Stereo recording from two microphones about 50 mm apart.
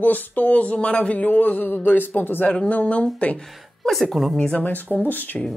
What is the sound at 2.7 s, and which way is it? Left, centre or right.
Speech, left.